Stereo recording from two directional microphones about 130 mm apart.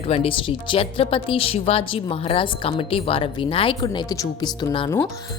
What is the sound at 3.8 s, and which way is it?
Speech, 30° left (ahead or behind).